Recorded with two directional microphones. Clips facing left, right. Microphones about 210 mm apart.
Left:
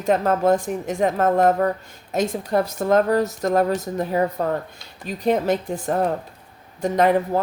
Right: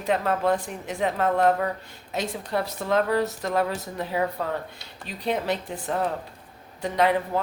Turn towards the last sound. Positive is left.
turn(degrees=45)  # may be behind; listen again after turning